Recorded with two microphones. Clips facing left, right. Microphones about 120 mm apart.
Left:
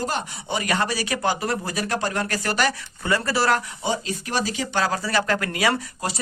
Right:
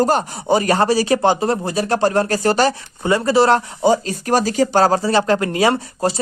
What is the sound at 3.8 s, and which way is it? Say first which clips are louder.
Speech: right 10 dB; 40° right (ahead or behind).